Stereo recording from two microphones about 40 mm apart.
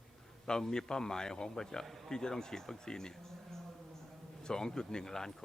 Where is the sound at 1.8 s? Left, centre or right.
Centre.